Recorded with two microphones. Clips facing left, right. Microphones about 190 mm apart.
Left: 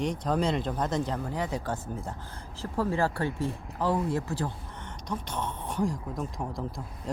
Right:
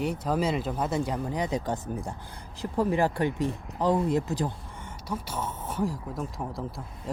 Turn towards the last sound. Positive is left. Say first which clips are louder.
# even
turn(degrees=0)  # may be behind; listen again after turning